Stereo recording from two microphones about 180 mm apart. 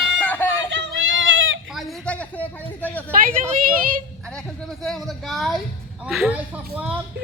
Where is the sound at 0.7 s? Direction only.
90° right.